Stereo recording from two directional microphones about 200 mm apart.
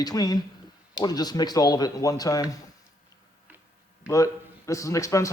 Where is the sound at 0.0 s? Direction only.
20° left (ahead or behind).